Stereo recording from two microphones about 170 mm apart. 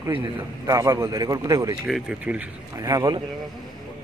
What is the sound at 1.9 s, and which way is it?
Speech, 5° right (ahead or behind).